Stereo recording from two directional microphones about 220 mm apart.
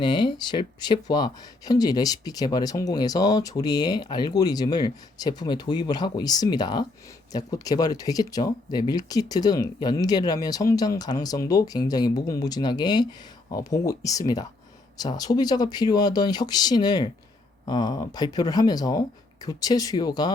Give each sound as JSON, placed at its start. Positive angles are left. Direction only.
{"t": 0.0, "sound": "speech", "side_deg": 20}